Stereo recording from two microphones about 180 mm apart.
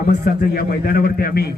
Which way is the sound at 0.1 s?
55° left (ahead or behind).